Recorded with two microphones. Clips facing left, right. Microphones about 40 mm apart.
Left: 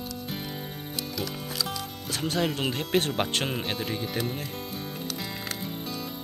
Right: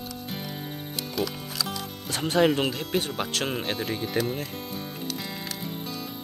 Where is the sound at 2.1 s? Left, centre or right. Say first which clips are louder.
Right 6 dB; centre.